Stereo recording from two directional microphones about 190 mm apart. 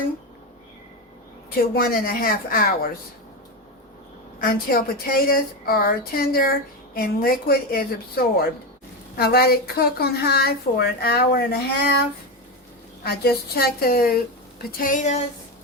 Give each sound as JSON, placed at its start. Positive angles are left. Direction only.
{"t": 1.5, "sound": "a woman's voice", "side_deg": 50}
{"t": 4.4, "sound": "a woman's voice", "side_deg": 50}
{"t": 13.0, "sound": "a woman's voice", "side_deg": 55}